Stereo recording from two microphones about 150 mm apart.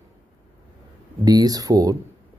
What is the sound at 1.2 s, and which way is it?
Speech, 25° right (ahead or behind).